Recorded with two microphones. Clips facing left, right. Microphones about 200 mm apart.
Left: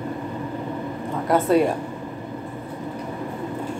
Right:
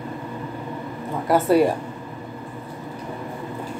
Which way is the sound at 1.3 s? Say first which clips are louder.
Right 1 dB; 5° right (ahead or behind).